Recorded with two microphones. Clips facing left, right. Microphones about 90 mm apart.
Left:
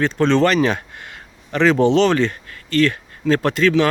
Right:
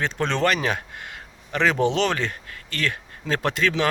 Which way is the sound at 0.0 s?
10° right (ahead or behind).